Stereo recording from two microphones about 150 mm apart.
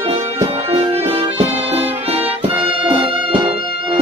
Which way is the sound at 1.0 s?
40° right (ahead or behind).